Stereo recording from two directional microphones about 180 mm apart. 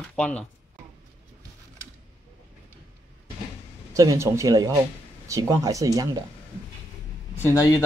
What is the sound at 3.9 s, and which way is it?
Speech, 20° right (ahead or behind).